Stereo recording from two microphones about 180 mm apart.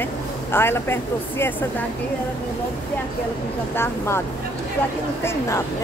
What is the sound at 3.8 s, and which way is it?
Speech, 15° left (ahead or behind).